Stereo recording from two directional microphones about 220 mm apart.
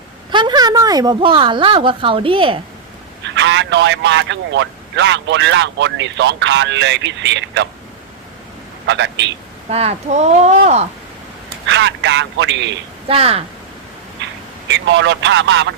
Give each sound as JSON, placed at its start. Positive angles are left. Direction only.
{"t": 0.3, "sound": "a woman's voice", "side_deg": -20}
{"t": 3.2, "sound": "speech", "side_deg": -55}
{"t": 8.9, "sound": "speech", "side_deg": -55}
{"t": 9.6, "sound": "speech", "side_deg": -30}
{"t": 11.4, "sound": "speech", "side_deg": -55}
{"t": 13.1, "sound": "speech", "side_deg": -25}
{"t": 14.7, "sound": "speech", "side_deg": -55}